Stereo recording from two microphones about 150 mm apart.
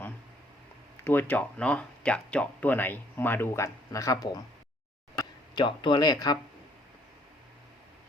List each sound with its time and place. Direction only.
1.0 s speech: 10° left (ahead or behind); by 6.4 s 25° left (ahead or behind)